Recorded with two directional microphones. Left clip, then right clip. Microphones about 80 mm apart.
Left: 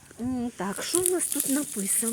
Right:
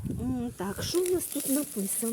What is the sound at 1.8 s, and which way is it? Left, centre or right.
Speech, left.